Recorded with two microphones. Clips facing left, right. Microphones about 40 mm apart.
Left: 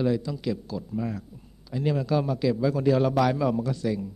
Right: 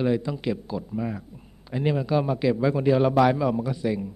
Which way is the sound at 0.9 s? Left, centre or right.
Centre.